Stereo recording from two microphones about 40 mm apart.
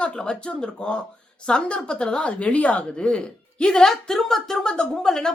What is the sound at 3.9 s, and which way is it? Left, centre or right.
A woman's voice, centre.